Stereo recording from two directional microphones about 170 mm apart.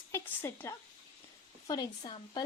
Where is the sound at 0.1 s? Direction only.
15° left (ahead or behind).